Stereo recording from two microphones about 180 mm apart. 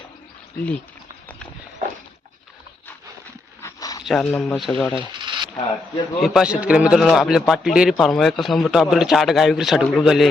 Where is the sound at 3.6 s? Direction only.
20° left (ahead or behind).